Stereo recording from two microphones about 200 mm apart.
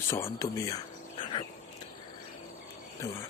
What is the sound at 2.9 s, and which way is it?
Speech, 15° left (ahead or behind).